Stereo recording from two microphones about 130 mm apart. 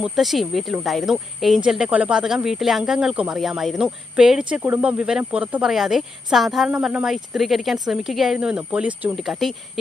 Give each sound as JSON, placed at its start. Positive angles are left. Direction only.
{"t": 0.0, "sound": "speech", "side_deg": 0}